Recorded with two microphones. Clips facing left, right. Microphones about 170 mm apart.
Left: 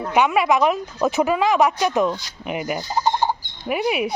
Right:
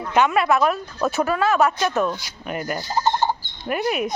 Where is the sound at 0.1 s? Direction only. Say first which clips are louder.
Even; 10° left (ahead or behind).